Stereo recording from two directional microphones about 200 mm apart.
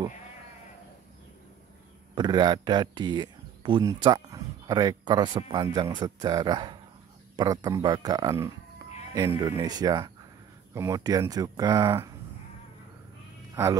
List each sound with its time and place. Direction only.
2.1 s a man's voice: 20° right (ahead or behind)